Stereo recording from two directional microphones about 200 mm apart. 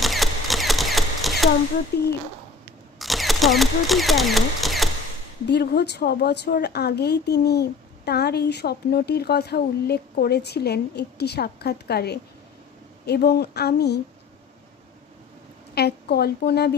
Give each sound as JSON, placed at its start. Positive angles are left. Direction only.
{"t": 0.0, "sound": "a sound", "side_deg": 0}
{"t": 1.9, "sound": "speech", "side_deg": 55}
{"t": 3.0, "sound": "speech", "side_deg": 0}
{"t": 5.5, "sound": "a woman's voice", "side_deg": 55}
{"t": 15.7, "sound": "a woman's voice", "side_deg": 55}